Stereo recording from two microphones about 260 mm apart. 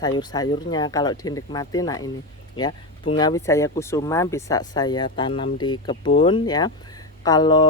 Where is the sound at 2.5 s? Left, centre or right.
Centre.